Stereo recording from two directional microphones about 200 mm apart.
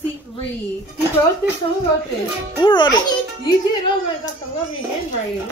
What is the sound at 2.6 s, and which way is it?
Speech, 20° left (ahead or behind).